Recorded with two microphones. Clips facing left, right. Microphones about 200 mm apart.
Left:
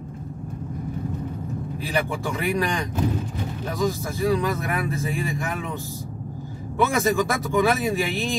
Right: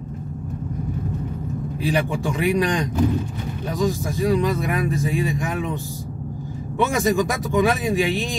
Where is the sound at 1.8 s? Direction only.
15° right (ahead or behind).